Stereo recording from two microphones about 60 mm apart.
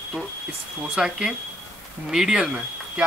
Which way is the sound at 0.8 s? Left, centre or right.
Centre.